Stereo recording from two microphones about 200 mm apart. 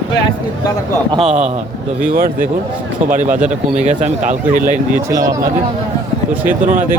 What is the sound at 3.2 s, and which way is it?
Speech, 5° right (ahead or behind).